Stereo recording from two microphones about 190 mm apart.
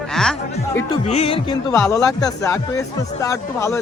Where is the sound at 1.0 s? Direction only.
35° left (ahead or behind).